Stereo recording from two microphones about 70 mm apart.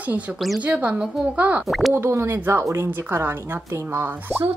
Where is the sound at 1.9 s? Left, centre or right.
Right.